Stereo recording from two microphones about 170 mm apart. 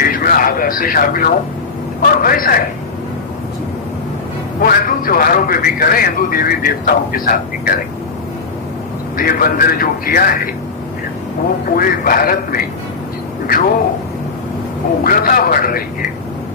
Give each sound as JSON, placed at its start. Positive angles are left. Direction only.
{"t": 0.0, "sound": "a man's voice", "side_deg": 55}
{"t": 4.6, "sound": "a man's voice", "side_deg": 55}
{"t": 9.1, "sound": "a man's voice", "side_deg": 60}
{"t": 11.7, "sound": "a man's voice", "side_deg": 55}
{"t": 15.0, "sound": "a man's voice", "side_deg": 55}